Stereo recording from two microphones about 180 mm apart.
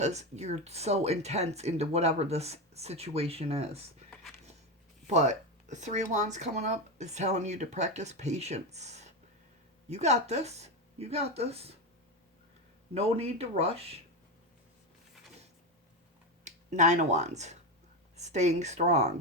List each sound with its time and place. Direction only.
0.0 s speech: 40° right (ahead or behind)
5.0 s speech: 40° right (ahead or behind)
13.0 s speech: 35° right (ahead or behind)
16.4 s speech: 40° right (ahead or behind)